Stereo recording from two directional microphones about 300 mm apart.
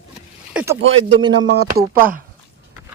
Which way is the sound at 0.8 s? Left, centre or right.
Right.